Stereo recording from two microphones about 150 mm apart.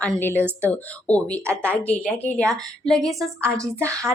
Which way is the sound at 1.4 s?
15° right (ahead or behind).